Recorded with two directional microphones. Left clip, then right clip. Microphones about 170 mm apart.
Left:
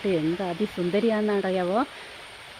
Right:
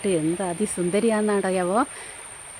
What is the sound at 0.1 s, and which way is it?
Speech, 20° right (ahead or behind).